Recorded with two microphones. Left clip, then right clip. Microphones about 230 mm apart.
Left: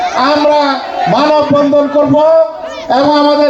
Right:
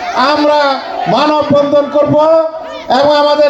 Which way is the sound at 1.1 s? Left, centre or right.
Right.